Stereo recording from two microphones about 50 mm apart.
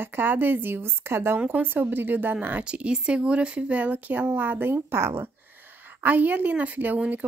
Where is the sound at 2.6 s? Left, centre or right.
Right.